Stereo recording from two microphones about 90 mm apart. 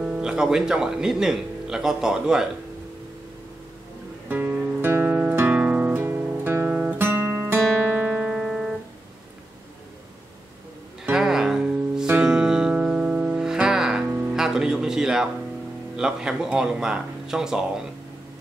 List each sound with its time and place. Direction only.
0.0 s speech: 10° right (ahead or behind)
4.3 s music: 20° right (ahead or behind)
5.5 s guitar: 15° right (ahead or behind)
8.1 s music: 5° right (ahead or behind)
11.1 s music: 5° right (ahead or behind)
14.0 s music: 25° right (ahead or behind)
14.3 s music: 5° right (ahead or behind)
16.0 s speech: 10° right (ahead or behind)